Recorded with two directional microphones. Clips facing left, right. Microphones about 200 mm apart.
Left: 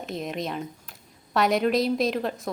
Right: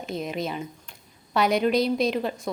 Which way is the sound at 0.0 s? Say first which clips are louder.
Right 1 dB; centre (ahead or behind).